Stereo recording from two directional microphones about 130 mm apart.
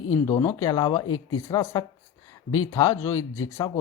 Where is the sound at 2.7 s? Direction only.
25° left (ahead or behind).